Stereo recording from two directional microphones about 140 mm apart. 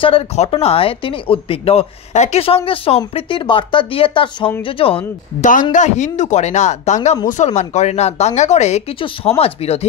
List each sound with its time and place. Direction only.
0.0 s speech: 40° left (ahead or behind)
5.4 s speech: 65° left (ahead or behind); by 9.8 s 50° left (ahead or behind)